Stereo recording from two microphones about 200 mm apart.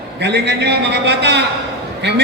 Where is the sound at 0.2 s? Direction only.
60° right (ahead or behind).